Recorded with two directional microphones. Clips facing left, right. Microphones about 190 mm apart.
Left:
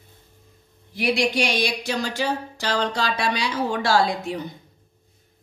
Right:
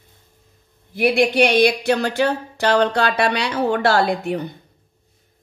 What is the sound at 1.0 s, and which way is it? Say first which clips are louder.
Speech: right 6 dB; 55° right (ahead or behind).